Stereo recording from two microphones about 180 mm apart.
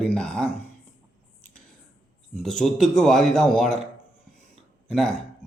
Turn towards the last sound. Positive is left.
turn(degrees=5)  # may be behind; listen again after turning